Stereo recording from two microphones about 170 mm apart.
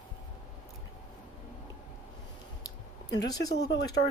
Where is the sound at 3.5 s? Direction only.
85° left.